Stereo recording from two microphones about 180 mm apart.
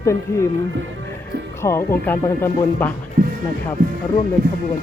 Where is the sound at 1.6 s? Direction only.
15° left (ahead or behind).